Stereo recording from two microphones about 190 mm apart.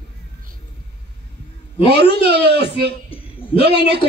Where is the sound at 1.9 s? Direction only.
60° right (ahead or behind).